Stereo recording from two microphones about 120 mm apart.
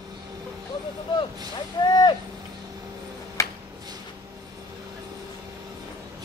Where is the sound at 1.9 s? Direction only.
35° left (ahead or behind).